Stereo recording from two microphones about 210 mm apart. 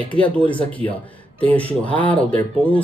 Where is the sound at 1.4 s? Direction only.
5° left (ahead or behind).